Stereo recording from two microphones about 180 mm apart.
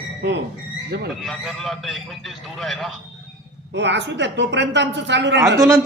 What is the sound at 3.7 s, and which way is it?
A woman's voice, 75° right (ahead or behind).